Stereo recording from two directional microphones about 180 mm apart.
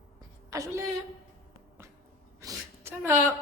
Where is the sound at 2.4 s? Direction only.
15° right (ahead or behind).